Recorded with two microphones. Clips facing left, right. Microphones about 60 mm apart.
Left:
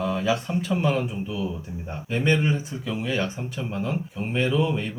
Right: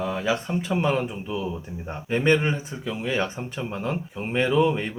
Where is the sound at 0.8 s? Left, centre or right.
Right.